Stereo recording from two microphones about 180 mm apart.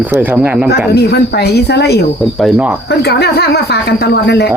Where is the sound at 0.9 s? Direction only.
65° left (ahead or behind).